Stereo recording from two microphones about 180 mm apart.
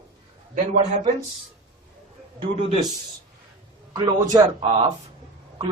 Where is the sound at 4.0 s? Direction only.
25° right (ahead or behind).